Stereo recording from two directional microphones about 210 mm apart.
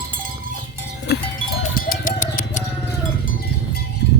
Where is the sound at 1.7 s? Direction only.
45° left (ahead or behind).